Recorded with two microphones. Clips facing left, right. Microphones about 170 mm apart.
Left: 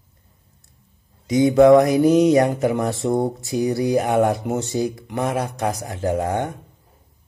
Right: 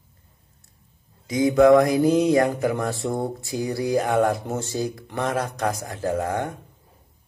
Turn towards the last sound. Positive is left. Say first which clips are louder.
# left 3 dB
turn(degrees=20)  # may be behind; listen again after turning